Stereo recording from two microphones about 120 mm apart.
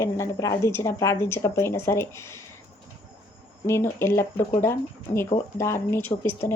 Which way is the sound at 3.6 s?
20° left (ahead or behind).